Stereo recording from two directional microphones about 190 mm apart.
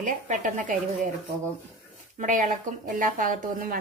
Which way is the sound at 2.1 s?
40° right (ahead or behind).